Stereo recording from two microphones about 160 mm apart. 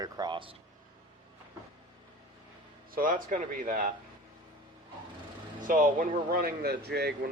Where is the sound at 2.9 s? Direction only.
60° right (ahead or behind).